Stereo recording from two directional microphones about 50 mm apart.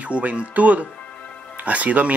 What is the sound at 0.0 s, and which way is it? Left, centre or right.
Speech, right.